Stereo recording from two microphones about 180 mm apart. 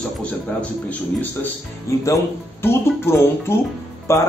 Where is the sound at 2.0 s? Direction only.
15° left (ahead or behind).